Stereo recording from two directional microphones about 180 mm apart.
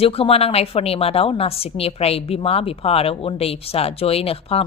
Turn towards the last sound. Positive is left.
turn(degrees=30)  # may be behind; listen again after turning